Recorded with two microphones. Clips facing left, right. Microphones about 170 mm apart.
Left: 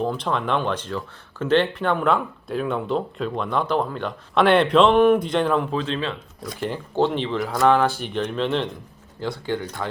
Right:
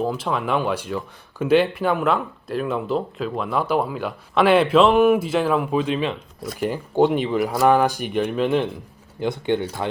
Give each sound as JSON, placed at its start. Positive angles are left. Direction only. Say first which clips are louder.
{"t": 0.0, "sound": "speech", "louder": "right 1 dB", "side_deg": -5}
{"t": 9.2, "sound": "speech", "louder": "right 4 dB", "side_deg": -20}